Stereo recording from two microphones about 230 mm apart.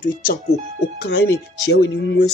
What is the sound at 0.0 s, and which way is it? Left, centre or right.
Speech, left.